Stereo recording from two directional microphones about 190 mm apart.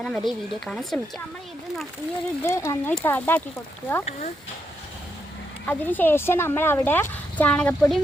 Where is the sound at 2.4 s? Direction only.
15° left (ahead or behind).